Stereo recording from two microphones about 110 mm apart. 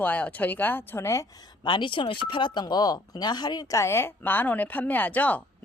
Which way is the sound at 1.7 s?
45° left (ahead or behind).